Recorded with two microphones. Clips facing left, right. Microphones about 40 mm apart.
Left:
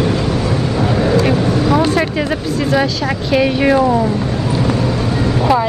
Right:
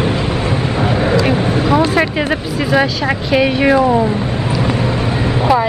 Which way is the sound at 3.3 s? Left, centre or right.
Centre.